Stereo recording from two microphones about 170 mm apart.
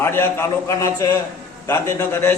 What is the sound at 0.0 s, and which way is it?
A man's voice, 15° left (ahead or behind).